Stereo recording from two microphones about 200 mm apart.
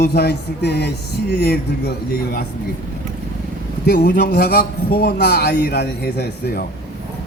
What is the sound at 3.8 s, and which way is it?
A man's voice, 50° left (ahead or behind).